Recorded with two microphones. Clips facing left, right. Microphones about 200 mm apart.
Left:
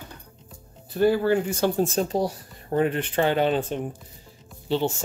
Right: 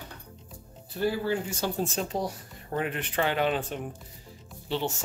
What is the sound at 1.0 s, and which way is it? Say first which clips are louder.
Speech: left 8 dB; 60° left (ahead or behind).